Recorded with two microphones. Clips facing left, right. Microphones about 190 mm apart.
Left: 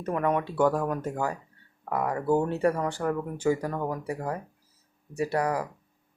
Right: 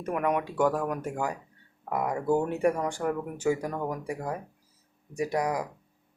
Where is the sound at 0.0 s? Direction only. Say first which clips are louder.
Left 1 dB; 10° right (ahead or behind).